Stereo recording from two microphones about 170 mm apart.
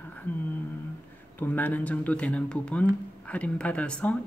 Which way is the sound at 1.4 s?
10° left (ahead or behind).